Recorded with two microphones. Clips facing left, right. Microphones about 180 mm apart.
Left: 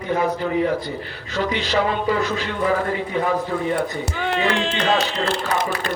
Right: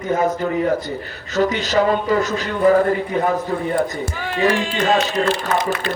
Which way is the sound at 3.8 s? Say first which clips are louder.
Right 2 dB; 70° left (ahead or behind).